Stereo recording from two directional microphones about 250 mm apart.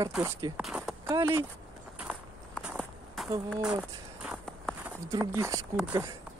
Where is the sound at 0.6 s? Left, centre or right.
Centre.